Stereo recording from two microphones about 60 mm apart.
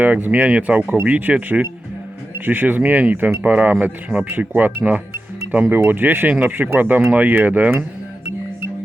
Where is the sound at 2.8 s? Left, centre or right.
Right.